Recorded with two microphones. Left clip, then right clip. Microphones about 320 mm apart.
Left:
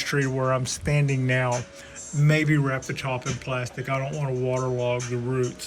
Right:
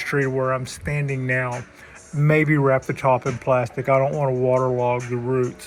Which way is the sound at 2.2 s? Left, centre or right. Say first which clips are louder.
Right 5 dB; centre.